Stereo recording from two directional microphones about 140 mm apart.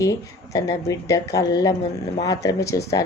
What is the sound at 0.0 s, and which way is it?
A woman's voice, 25° left (ahead or behind).